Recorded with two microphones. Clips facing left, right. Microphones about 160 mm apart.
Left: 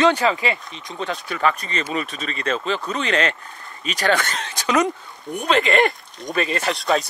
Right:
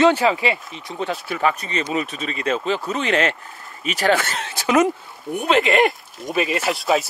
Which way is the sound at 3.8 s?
10° right (ahead or behind).